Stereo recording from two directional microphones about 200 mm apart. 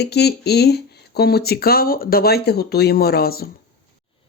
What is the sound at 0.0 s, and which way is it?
Speech, 55° left (ahead or behind).